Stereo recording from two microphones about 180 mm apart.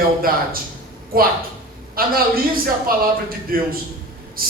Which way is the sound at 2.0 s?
55° right (ahead or behind).